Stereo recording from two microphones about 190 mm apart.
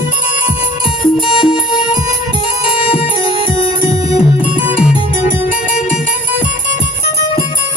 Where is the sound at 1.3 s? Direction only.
25° left (ahead or behind).